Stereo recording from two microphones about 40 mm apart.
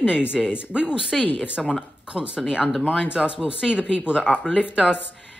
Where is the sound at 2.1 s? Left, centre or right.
Right.